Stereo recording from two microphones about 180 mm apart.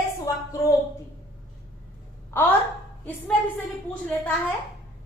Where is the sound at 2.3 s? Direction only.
15° left (ahead or behind).